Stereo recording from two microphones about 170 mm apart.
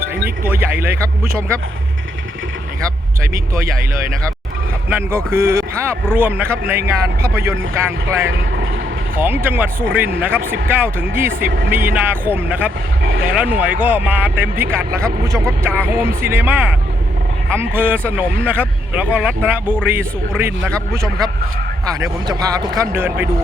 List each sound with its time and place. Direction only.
0.4 s speech: 10° right (ahead or behind)
4.9 s speech: 15° right (ahead or behind)
11.4 s speech: 60° right (ahead or behind)
11.9 s speech: 10° right (ahead or behind)
22.0 s a man's voice: 20° right (ahead or behind)